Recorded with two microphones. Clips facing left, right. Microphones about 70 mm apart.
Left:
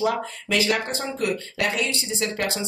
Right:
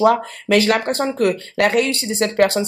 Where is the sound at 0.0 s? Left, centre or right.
Right.